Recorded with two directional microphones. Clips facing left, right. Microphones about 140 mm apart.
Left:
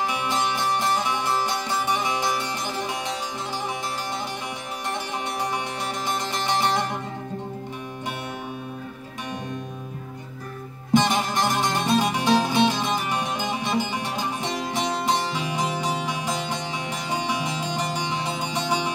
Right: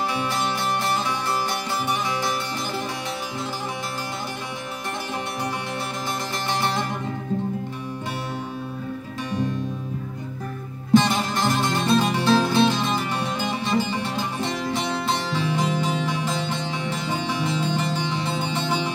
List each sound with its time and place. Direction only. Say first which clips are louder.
0.1 s music: even; 20° left (ahead or behind)
6.0 s music: left 3 dB; 20° left (ahead or behind)
10.9 s music: right 2 dB; 15° left (ahead or behind)